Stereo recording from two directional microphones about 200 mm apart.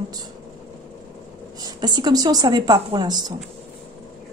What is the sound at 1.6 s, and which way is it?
A woman's voice, 20° right (ahead or behind).